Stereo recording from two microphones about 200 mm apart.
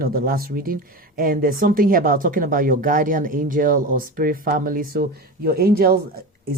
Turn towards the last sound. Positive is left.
turn(degrees=-45)  # may be behind; listen again after turning